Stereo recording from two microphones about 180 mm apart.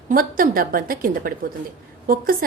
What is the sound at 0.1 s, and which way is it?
A woman's voice, 50° right (ahead or behind).